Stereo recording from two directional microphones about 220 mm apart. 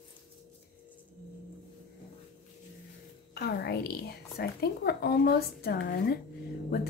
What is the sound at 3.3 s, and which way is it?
A woman's voice, 45° left (ahead or behind).